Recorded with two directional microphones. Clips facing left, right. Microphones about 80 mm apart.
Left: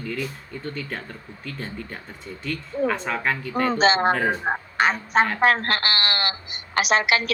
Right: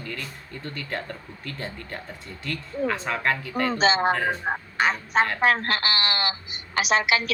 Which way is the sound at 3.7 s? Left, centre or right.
Left.